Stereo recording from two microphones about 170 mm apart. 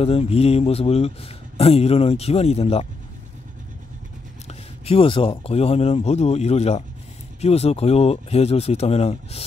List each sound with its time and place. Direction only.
0.0 s speech: 35° left (ahead or behind)
4.5 s speech: 35° left (ahead or behind)